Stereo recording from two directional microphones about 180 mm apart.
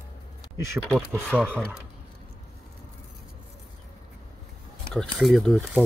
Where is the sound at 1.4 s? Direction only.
10° right (ahead or behind).